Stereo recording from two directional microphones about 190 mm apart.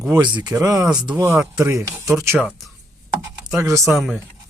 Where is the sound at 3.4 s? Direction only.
15° right (ahead or behind).